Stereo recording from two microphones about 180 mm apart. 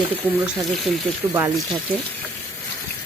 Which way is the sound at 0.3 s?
5° right (ahead or behind).